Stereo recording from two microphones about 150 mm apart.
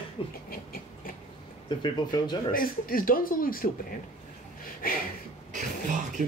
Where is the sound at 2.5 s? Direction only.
70° left (ahead or behind).